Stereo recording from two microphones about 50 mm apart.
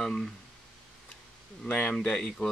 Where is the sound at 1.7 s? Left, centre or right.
Left.